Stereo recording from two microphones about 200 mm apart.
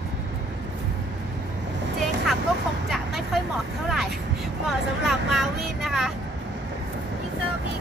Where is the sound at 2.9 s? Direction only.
Centre (ahead or behind).